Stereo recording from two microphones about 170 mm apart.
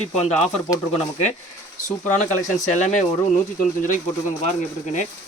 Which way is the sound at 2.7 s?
45° left (ahead or behind).